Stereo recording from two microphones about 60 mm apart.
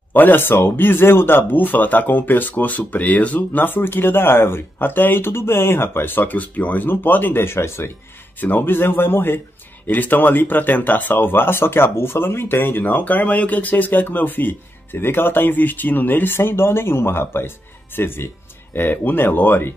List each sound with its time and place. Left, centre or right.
0.1 s speech: left
8.4 s speech: left
12.8 s speech: left